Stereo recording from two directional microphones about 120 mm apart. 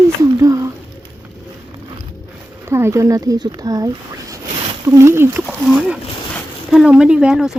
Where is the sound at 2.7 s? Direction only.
25° right (ahead or behind).